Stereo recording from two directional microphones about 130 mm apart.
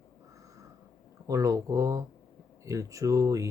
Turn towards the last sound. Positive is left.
turn(degrees=-25)  # may be behind; listen again after turning